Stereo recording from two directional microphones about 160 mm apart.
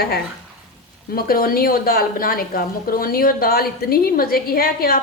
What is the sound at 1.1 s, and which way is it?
A woman's voice, 65° left (ahead or behind).